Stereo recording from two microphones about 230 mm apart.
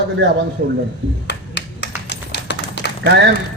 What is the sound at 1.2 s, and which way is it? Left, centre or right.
Typewriter, left.